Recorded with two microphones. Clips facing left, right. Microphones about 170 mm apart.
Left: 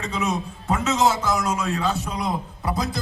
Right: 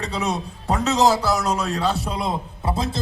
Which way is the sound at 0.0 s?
35° right (ahead or behind).